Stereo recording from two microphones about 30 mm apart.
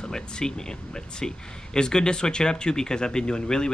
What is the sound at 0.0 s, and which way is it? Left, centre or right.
Speech, left.